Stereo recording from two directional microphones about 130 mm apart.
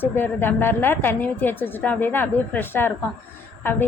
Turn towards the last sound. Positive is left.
turn(degrees=15)  # may be behind; listen again after turning